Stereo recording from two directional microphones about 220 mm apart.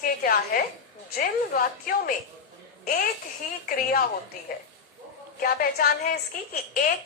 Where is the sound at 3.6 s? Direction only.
45° left (ahead or behind).